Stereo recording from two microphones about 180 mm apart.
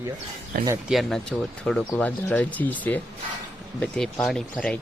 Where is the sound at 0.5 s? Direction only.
55° right (ahead or behind).